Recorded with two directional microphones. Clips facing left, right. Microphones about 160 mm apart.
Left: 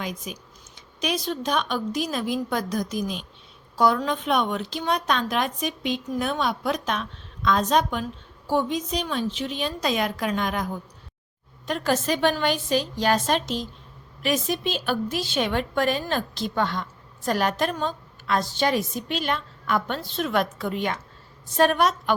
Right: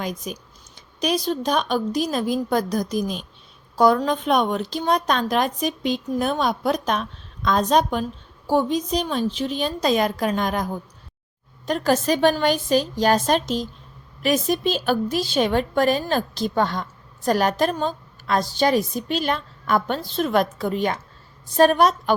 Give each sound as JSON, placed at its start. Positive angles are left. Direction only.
{"t": 0.0, "sound": "a woman's voice", "side_deg": -40}